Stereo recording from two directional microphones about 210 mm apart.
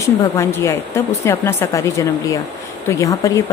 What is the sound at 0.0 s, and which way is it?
A woman's voice, 15° left (ahead or behind).